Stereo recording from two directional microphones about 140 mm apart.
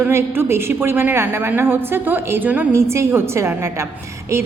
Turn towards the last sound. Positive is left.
turn(degrees=-20)  # may be behind; listen again after turning